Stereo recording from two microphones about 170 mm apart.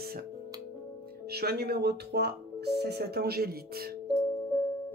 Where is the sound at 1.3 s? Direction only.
70° right (ahead or behind).